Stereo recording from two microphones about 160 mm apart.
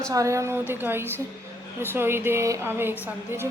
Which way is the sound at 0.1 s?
20° right (ahead or behind).